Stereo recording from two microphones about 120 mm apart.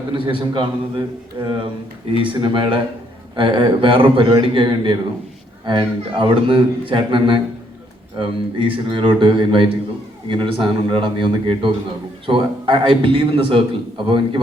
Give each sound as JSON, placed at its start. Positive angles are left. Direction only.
{"t": 0.1, "sound": "a man's voice", "side_deg": -45}